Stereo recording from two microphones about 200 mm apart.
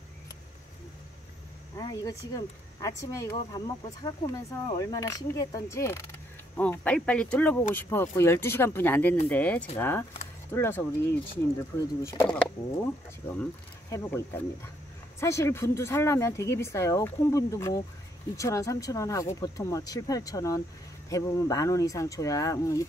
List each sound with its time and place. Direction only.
1.8 s speech: 20° left (ahead or behind)
13.4 s speech: 15° left (ahead or behind)